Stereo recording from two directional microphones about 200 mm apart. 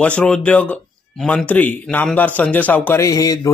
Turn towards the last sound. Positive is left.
turn(degrees=15)  # may be behind; listen again after turning